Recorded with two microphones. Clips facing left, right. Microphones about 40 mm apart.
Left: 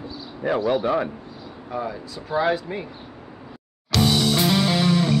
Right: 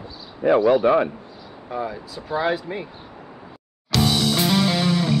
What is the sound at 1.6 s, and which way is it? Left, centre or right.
Speech, centre.